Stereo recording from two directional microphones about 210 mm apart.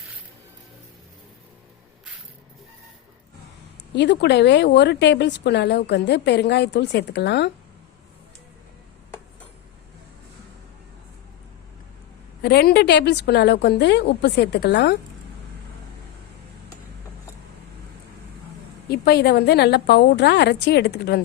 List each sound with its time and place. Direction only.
3.9 s speech: 55° left (ahead or behind)
12.4 s speech: 50° left (ahead or behind)
18.9 s speech: 50° left (ahead or behind)